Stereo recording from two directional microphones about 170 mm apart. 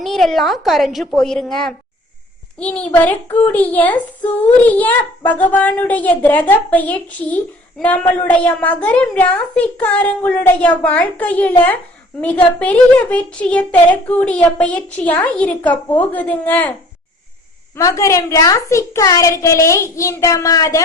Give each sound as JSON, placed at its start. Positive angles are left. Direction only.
{"t": 0.0, "sound": "a woman's voice", "side_deg": 0}
{"t": 17.7, "sound": "a child's voice", "side_deg": 20}